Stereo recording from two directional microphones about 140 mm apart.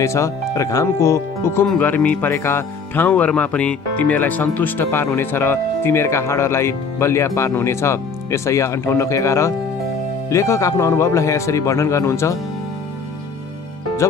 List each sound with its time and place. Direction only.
0.0 s speech: 20° left (ahead or behind)
14.0 s speech: 20° left (ahead or behind)